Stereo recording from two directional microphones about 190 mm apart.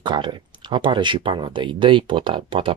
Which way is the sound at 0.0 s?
25° right (ahead or behind).